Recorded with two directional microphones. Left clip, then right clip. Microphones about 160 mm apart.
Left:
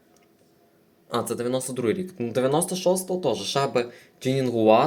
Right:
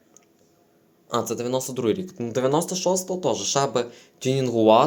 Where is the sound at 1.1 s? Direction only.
10° right (ahead or behind).